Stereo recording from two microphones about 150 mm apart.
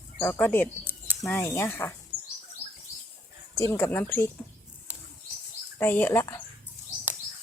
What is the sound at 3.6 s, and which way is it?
Speech, 20° left (ahead or behind).